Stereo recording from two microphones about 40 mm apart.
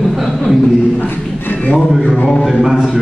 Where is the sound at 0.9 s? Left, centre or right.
Left.